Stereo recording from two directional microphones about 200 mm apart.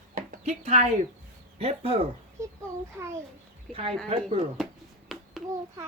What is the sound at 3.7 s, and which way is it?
Speech, 30° right (ahead or behind).